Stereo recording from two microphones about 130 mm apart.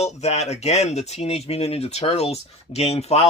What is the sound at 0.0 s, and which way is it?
Speech, 55° left (ahead or behind).